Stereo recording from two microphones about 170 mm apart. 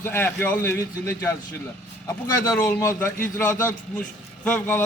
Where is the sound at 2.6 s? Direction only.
20° left (ahead or behind).